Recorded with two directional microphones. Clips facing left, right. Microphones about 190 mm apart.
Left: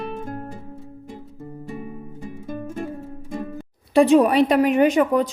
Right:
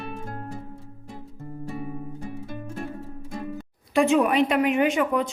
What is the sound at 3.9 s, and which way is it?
A woman's voice, 35° left (ahead or behind).